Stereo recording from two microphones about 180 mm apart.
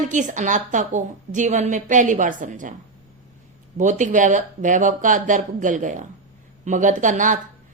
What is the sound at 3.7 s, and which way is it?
Speech, 45° right (ahead or behind).